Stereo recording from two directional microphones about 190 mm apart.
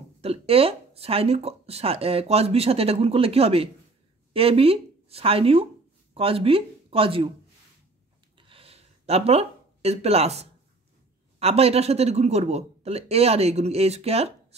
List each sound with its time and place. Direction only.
0.2 s speech: 30° right (ahead or behind)
8.4 s a sound: 30° right (ahead or behind)
11.3 s speech: 35° right (ahead or behind)